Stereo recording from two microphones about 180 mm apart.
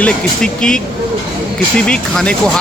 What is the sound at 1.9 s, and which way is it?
Speech, 5° left (ahead or behind).